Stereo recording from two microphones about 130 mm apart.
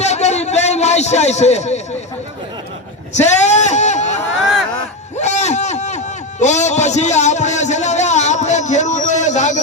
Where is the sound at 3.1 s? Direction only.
60° left (ahead or behind).